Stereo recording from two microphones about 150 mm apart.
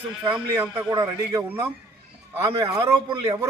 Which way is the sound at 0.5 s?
15° right (ahead or behind).